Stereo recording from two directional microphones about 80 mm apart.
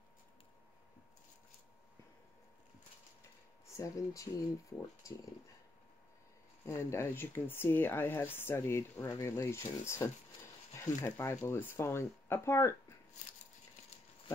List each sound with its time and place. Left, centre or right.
3.7 s speech: left
6.6 s speech: left